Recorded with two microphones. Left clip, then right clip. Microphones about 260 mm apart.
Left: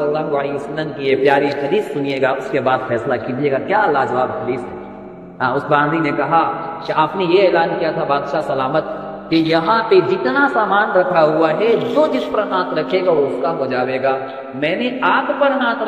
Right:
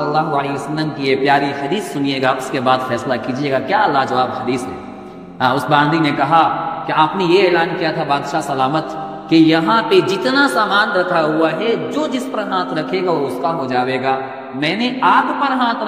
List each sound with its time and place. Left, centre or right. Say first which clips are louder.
0.1 s a man's voice: right 2 dB; right
5.4 s a man's voice: right 2 dB; right